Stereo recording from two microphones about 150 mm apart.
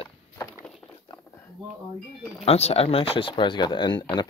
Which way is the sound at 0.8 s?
10° left (ahead or behind).